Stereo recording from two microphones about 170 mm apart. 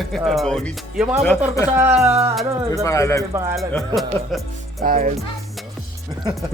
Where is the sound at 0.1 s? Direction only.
Centre (ahead or behind).